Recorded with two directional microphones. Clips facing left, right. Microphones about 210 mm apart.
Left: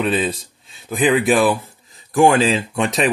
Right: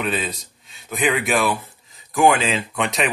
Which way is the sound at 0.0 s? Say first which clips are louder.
Left 5 dB; 30° left (ahead or behind).